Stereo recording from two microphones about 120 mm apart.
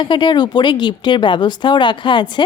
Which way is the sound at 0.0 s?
40° left (ahead or behind).